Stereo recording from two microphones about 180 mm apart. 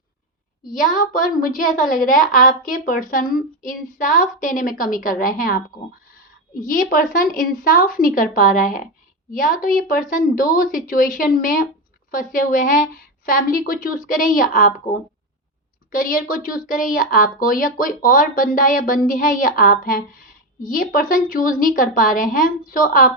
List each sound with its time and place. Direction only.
0.7 s a woman's voice: 45° left (ahead or behind)
15.9 s a woman's voice: 50° left (ahead or behind)